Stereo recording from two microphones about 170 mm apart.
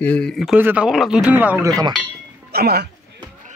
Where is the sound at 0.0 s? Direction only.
5° left (ahead or behind); by 1.7 s 10° right (ahead or behind).